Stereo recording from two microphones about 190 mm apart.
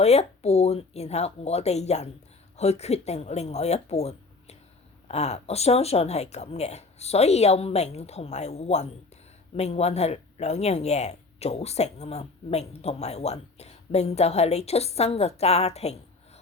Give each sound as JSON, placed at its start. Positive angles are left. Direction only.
{"t": 0.0, "sound": "speech", "side_deg": 35}